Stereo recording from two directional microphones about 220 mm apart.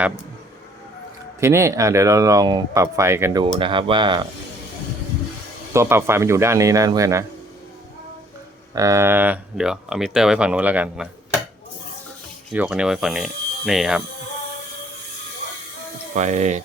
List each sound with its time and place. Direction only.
1.4 s speech: 10° right (ahead or behind)
3.6 s speech: 20° right (ahead or behind)
5.7 s speech: 10° right (ahead or behind)
8.7 s speech: 15° right (ahead or behind)
12.5 s speech: 5° right (ahead or behind)
16.1 s speech: 35° right (ahead or behind)